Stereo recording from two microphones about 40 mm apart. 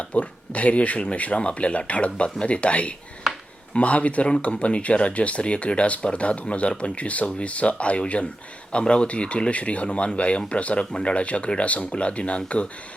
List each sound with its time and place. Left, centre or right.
0.1 s speech: left
3.3 s a sound: centre
3.8 s speech: left